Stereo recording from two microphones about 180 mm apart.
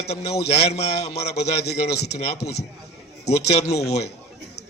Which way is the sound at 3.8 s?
35° left (ahead or behind).